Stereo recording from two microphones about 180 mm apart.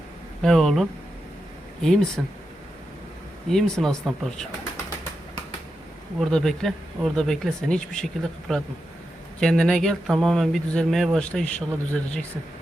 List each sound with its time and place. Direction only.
0.4 s speech: centre (ahead or behind)
3.5 s speech: centre (ahead or behind)
6.1 s speech: centre (ahead or behind)